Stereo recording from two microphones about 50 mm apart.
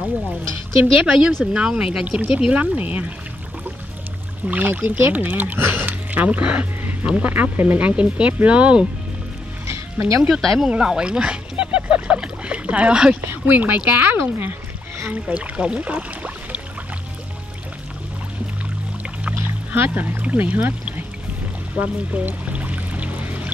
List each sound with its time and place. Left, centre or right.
0.9 s speech: centre
4.5 s speech: right
7.5 s speech: right
7.8 s speech: right
9.7 s music: right
10.4 s speech: centre
10.7 s a sound: centre
13.2 s speech: right
15.0 s speech: right
19.4 s speech: right
21.7 s music: right